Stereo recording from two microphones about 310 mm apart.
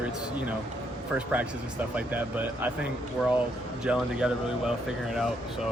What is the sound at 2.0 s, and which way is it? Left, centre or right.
Speech, centre.